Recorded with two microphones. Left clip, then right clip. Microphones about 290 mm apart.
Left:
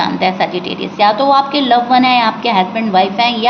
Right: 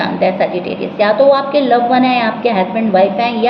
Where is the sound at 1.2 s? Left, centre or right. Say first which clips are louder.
Right 1 dB; left.